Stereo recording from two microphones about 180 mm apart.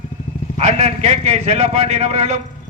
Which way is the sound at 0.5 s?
35° right (ahead or behind).